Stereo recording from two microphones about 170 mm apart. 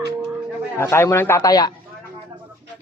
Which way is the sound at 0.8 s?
15° left (ahead or behind).